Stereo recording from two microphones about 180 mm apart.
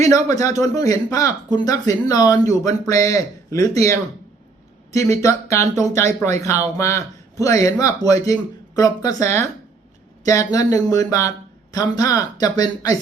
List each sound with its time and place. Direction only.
0.0 s a man's voice: 20° left (ahead or behind)